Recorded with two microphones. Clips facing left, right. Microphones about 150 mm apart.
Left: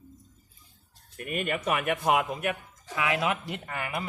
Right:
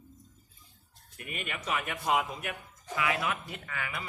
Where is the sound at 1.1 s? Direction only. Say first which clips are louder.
Left 9 dB; 50° left (ahead or behind).